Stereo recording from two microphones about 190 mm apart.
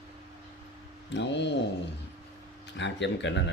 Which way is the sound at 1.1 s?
65° left (ahead or behind).